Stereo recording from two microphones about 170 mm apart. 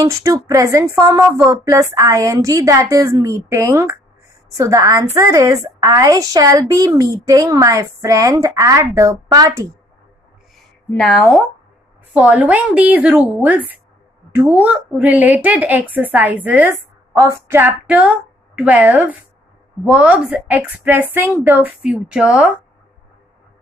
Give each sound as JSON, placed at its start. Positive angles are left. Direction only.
{"t": 0.0, "sound": "a woman's voice", "side_deg": -20}
{"t": 10.9, "sound": "a woman's voice", "side_deg": 0}